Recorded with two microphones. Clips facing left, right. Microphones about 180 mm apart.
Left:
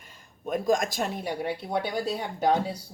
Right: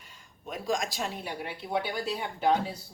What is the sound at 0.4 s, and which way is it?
Speech, 50° left (ahead or behind).